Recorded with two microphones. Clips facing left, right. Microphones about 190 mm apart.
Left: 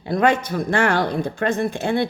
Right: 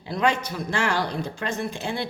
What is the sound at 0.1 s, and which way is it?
A woman's voice, 50° left (ahead or behind).